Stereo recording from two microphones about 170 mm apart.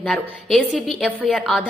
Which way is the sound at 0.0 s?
Centre (ahead or behind).